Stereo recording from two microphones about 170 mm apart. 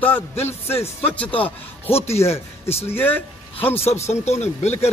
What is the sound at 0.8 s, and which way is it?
Speech, 10° left (ahead or behind).